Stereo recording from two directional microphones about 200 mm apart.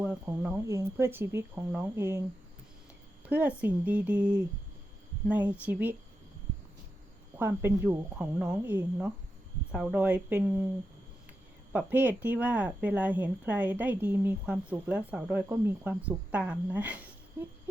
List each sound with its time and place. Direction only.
0.0 s speech: 10° right (ahead or behind)
3.2 s speech: 10° right (ahead or behind)
5.3 s speech: 5° right (ahead or behind)
7.3 s speech: 10° right (ahead or behind)
11.7 s speech: 10° right (ahead or behind)